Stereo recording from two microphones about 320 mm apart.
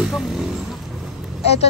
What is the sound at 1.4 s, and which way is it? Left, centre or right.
Speech, centre.